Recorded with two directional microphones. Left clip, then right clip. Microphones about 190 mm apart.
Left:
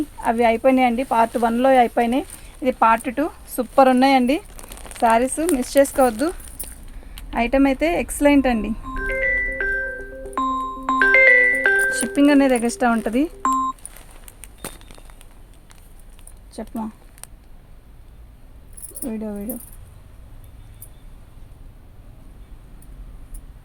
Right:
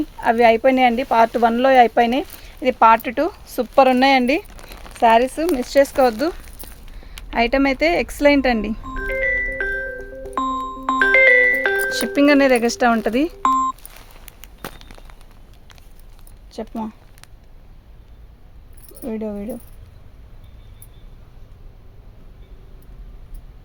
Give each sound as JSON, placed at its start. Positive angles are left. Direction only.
{"t": 0.2, "sound": "speech", "side_deg": -45}
{"t": 6.6, "sound": "a sound", "side_deg": -5}
{"t": 7.0, "sound": "speech", "side_deg": -45}
{"t": 8.9, "sound": "music", "side_deg": -35}
{"t": 16.5, "sound": "speech", "side_deg": -40}
{"t": 19.0, "sound": "speech", "side_deg": -40}